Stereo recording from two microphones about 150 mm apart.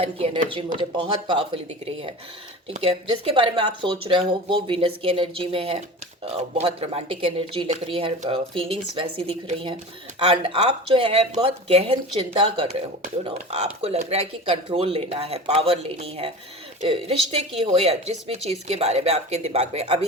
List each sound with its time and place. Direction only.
0.0 s speech: 40° right (ahead or behind)
13.8 s speech: 45° right (ahead or behind)